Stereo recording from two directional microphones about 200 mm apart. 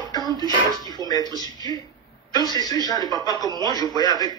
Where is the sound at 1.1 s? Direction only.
20° left (ahead or behind).